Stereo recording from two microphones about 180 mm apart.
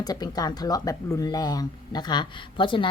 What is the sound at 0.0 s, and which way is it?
A woman's voice, 20° left (ahead or behind).